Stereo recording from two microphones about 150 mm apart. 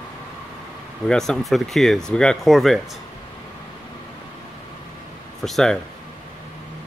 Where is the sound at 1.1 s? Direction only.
5° left (ahead or behind).